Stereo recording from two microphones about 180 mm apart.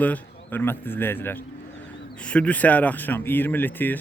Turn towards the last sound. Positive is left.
turn(degrees=10)  # may be behind; listen again after turning